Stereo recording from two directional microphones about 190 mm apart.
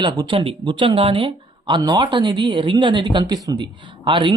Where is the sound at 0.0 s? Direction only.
25° right (ahead or behind).